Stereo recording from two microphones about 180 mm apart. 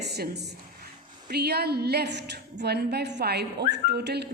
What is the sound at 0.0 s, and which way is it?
A woman's voice, 65° right (ahead or behind).